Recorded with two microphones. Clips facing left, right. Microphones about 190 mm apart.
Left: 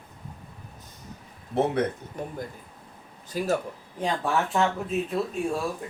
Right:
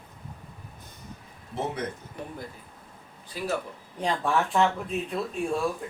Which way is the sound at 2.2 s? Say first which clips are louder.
Left 4 dB; 45° left (ahead or behind).